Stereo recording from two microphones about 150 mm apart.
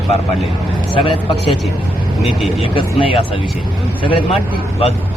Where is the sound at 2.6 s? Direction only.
35° left (ahead or behind).